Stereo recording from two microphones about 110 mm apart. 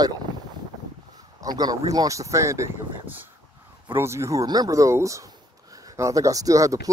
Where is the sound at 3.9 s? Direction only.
25° right (ahead or behind).